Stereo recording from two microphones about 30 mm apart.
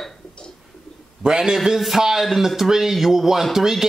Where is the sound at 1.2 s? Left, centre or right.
Right.